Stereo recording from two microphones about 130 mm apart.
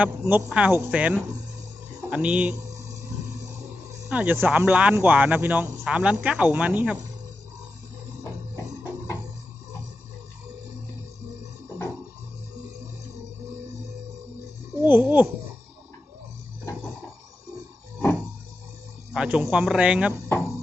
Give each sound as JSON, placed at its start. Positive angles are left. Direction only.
{"t": 0.2, "sound": "speech", "side_deg": -15}
{"t": 2.6, "sound": "a sound", "side_deg": -25}
{"t": 4.1, "sound": "speech", "side_deg": -10}
{"t": 8.2, "sound": "music", "side_deg": 25}
{"t": 14.8, "sound": "speech", "side_deg": -15}
{"t": 19.1, "sound": "speech", "side_deg": -10}